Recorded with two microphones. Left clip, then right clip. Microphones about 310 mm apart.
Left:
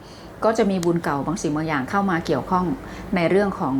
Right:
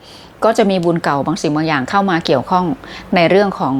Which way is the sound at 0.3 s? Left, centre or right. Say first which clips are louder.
Right 7 dB; right.